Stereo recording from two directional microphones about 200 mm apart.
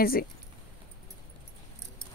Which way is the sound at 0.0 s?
45° left (ahead or behind).